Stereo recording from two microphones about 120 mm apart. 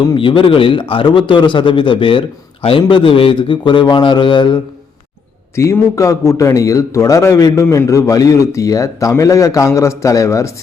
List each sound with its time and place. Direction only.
0.0 s a man's voice: 40° left (ahead or behind)
5.5 s a man's voice: 25° left (ahead or behind)